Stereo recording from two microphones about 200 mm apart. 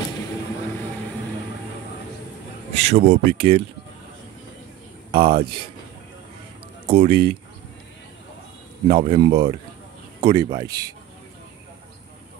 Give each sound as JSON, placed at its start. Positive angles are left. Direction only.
{"t": 2.7, "sound": "speech", "side_deg": -35}
{"t": 5.1, "sound": "speech", "side_deg": -25}
{"t": 6.9, "sound": "a man's voice", "side_deg": -30}
{"t": 8.8, "sound": "a man's voice", "side_deg": -25}